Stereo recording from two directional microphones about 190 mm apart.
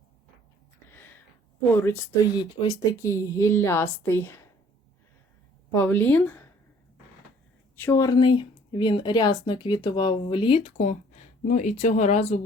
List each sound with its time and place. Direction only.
2.3 s speech: 25° left (ahead or behind)
5.7 s speech: 10° left (ahead or behind)
7.8 s speech: 15° left (ahead or behind); by 12.4 s 35° left (ahead or behind)